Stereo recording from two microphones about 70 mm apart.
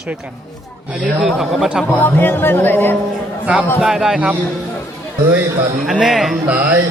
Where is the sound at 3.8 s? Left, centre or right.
Centre.